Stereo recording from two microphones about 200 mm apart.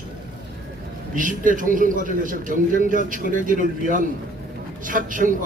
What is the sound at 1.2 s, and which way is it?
A man's voice, 40° right (ahead or behind).